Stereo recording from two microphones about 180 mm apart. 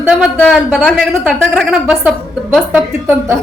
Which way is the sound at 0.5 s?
Centre (ahead or behind).